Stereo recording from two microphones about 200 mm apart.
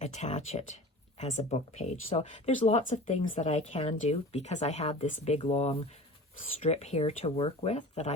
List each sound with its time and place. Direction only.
0.0 s speech: 35° left (ahead or behind)